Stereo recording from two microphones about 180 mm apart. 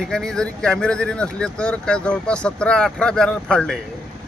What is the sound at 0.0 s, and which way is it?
Speech, 5° left (ahead or behind).